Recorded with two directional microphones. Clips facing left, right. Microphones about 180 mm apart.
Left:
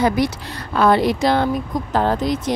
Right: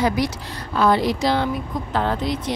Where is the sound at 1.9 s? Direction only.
40° left (ahead or behind).